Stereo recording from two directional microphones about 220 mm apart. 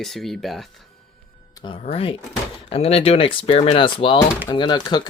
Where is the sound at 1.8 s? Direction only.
25° left (ahead or behind).